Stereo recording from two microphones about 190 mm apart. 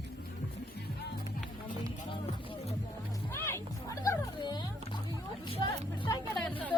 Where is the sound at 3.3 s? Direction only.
15° left (ahead or behind).